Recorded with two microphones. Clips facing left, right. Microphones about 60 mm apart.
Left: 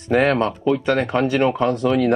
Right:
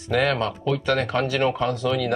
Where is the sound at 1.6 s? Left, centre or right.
Left.